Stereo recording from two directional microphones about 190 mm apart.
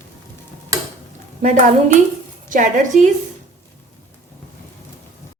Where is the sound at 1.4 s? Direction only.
40° right (ahead or behind).